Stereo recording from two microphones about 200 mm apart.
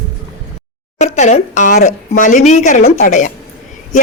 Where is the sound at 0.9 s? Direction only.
35° left (ahead or behind).